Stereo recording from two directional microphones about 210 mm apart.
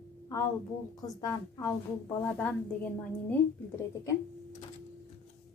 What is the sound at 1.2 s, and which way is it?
A woman's voice, 15° left (ahead or behind).